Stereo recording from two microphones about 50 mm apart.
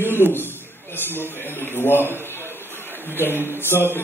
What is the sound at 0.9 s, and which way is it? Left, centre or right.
A man's voice, left.